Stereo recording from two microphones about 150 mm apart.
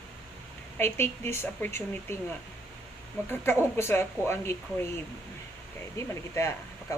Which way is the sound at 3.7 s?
15° left (ahead or behind).